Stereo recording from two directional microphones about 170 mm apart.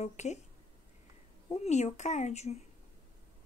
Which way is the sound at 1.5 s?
40° left (ahead or behind).